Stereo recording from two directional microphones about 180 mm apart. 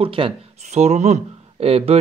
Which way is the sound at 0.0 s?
30° right (ahead or behind).